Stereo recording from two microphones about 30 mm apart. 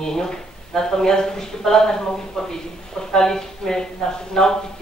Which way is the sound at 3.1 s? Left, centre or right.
Centre.